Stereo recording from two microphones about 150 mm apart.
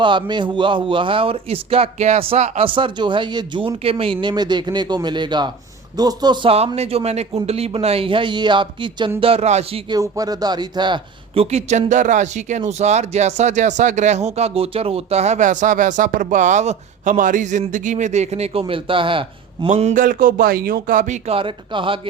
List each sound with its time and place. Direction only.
0.0 s speech: 30° right (ahead or behind)
9.9 s speech: 25° right (ahead or behind)
19.9 s speech: 65° right (ahead or behind)
21.2 s speech: 35° right (ahead or behind)